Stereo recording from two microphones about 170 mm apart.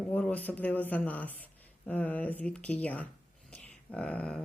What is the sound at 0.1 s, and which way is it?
Speech, 10° left (ahead or behind).